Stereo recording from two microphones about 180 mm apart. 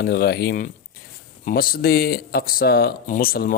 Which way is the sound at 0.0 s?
65° left (ahead or behind).